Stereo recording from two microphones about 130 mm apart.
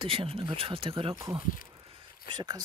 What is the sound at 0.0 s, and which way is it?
Speech, 45° right (ahead or behind).